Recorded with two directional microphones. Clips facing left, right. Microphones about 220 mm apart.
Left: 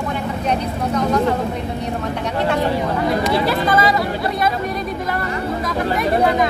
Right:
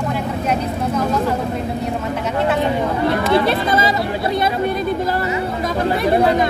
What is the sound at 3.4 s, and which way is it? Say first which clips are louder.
Speech: even; 25° right (ahead or behind).